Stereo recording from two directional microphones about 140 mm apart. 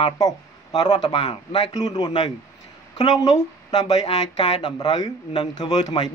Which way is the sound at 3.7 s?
30° left (ahead or behind).